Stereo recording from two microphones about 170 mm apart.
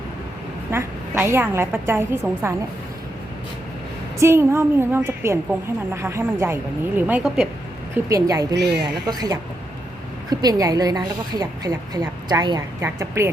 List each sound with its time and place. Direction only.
0.7 s a woman's voice: 15° right (ahead or behind)
4.2 s a woman's voice: 15° right (ahead or behind)
8.1 s a woman's voice: 20° right (ahead or behind)
8.5 s speech: 80° right
8.8 s a woman's voice: 25° right (ahead or behind)